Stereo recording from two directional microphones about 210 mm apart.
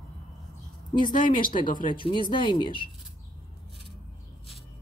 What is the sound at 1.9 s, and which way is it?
Speech, 25° left (ahead or behind).